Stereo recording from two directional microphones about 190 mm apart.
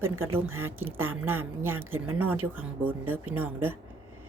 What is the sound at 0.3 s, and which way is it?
A woman's voice, 10° right (ahead or behind).